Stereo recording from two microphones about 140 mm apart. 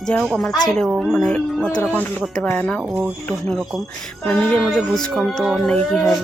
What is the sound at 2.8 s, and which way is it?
Speech, 10° right (ahead or behind).